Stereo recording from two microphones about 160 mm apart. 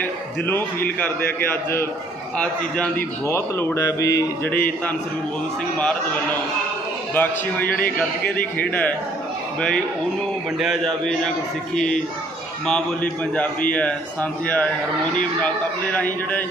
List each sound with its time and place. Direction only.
0.0 s a man's voice: 10° left (ahead or behind)
7.1 s a man's voice: 10° left (ahead or behind)